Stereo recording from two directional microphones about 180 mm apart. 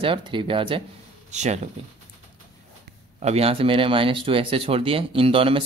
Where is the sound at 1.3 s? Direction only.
40° right (ahead or behind).